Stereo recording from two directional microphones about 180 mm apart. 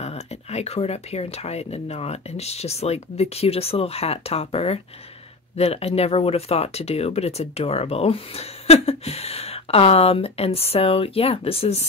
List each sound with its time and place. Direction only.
0.0 s speech: 35° left (ahead or behind)